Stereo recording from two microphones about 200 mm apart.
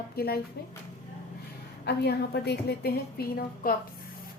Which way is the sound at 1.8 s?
55° left (ahead or behind).